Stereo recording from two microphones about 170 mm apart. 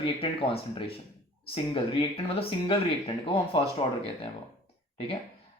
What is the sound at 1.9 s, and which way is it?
Speech, 35° left (ahead or behind).